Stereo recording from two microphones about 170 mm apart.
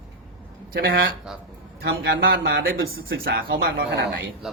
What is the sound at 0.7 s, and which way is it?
Speech, 65° right (ahead or behind).